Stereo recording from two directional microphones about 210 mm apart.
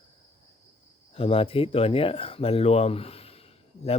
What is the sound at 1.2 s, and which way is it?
Speech, 25° left (ahead or behind).